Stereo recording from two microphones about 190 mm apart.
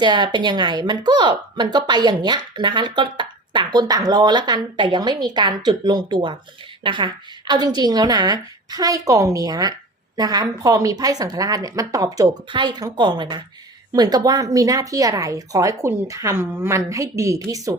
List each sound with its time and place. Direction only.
0.0 s speech: 20° right (ahead or behind)